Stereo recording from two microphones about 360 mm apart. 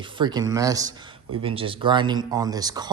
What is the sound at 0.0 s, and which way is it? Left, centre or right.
Speech, centre.